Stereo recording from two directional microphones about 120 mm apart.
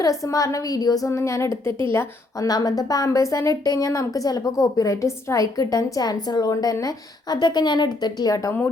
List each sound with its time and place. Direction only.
0.0 s a woman's voice: 30° left (ahead or behind)
2.5 s a woman's voice: 35° left (ahead or behind)